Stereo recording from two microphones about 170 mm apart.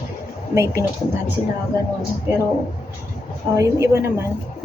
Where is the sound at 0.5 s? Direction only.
15° right (ahead or behind).